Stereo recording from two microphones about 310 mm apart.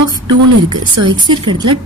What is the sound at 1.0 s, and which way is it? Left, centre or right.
Speech, right.